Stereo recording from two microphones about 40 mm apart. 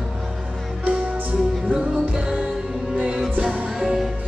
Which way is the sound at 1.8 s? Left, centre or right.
Centre.